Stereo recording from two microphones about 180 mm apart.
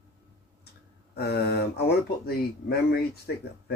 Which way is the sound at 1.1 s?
65° left (ahead or behind).